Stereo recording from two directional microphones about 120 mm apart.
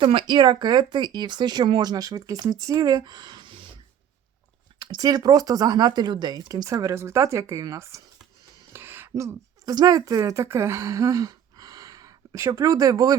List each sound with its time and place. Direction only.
0.0 s speech: 45° right (ahead or behind)
4.8 s speech: 35° right (ahead or behind)